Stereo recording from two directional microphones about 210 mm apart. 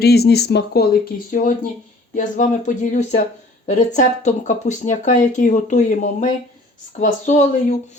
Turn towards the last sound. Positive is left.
turn(degrees=35)  # may be behind; listen again after turning